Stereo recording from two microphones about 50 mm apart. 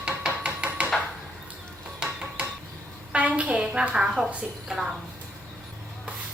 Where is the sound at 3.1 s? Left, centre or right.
Right; by 5.0 s centre.